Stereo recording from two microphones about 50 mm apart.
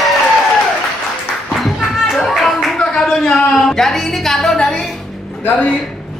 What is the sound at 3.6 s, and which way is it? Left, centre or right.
Music, centre.